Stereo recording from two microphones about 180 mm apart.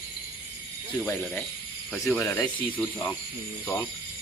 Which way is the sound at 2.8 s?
5° left (ahead or behind).